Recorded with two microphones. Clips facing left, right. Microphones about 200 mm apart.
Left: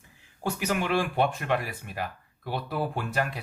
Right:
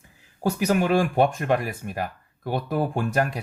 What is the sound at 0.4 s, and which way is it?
Speech, 40° right (ahead or behind).